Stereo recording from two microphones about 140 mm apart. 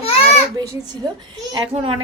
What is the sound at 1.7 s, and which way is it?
Speech, 40° right (ahead or behind).